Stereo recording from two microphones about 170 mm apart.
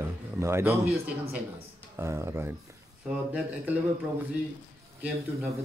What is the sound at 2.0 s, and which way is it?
Speech, 15° right (ahead or behind).